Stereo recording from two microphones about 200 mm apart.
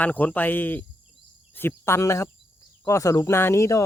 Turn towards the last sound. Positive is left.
turn(degrees=15)  # may be behind; listen again after turning